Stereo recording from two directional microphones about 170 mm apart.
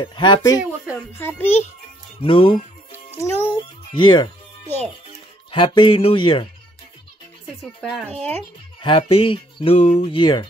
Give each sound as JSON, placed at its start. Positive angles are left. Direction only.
{"t": 0.0, "sound": "speech", "side_deg": 25}
{"t": 1.1, "sound": "a child's voice", "side_deg": 10}
{"t": 2.2, "sound": "fowl", "side_deg": 30}
{"t": 2.9, "sound": "music", "side_deg": 15}
{"t": 3.9, "sound": "speech", "side_deg": 30}
{"t": 4.6, "sound": "a child's voice", "side_deg": 10}
{"t": 5.5, "sound": "fowl", "side_deg": 30}
{"t": 8.0, "sound": "a child's voice", "side_deg": 10}
{"t": 8.8, "sound": "fowl", "side_deg": 30}